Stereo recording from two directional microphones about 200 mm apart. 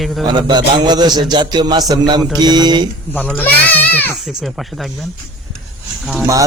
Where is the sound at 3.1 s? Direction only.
5° left (ahead or behind).